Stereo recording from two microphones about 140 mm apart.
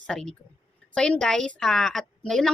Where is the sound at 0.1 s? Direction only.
5° left (ahead or behind).